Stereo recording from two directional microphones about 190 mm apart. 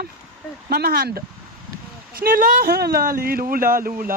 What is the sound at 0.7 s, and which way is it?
Speech, 50° right (ahead or behind).